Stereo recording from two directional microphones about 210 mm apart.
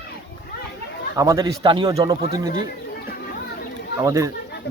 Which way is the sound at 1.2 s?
15° right (ahead or behind).